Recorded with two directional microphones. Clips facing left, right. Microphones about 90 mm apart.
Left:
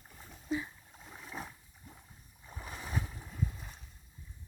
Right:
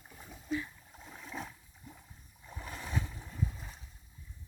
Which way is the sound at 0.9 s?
Centre (ahead or behind).